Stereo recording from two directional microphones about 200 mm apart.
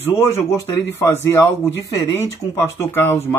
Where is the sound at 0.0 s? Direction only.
15° left (ahead or behind).